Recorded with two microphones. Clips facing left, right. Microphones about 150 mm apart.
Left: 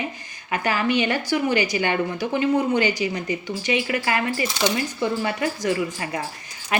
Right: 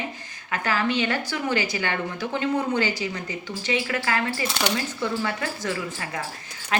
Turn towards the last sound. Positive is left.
turn(degrees=15)  # may be behind; listen again after turning